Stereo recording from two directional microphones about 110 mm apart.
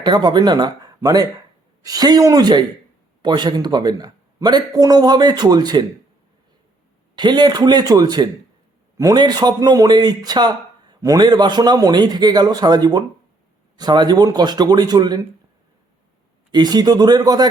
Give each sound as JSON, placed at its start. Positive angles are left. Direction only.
{"t": 0.0, "sound": "a man's voice", "side_deg": -40}
{"t": 7.2, "sound": "a man's voice", "side_deg": -40}
{"t": 16.5, "sound": "a man's voice", "side_deg": -40}